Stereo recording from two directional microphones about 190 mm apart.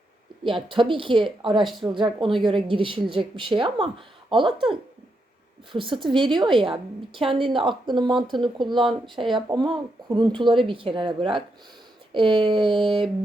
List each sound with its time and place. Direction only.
0.4 s a woman's voice: 25° right (ahead or behind)
1.6 s speech: centre (ahead or behind)
1.9 s a woman's voice: 25° right (ahead or behind)
5.7 s a woman's voice: 25° right (ahead or behind)